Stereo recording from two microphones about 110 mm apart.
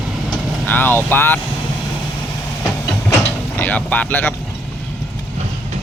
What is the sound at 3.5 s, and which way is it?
Speech, 15° left (ahead or behind).